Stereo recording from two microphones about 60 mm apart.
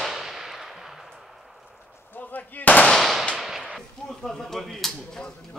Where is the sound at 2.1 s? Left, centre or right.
Left.